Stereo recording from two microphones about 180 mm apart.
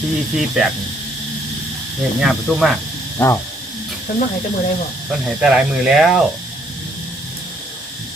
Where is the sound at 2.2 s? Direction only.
Centre (ahead or behind).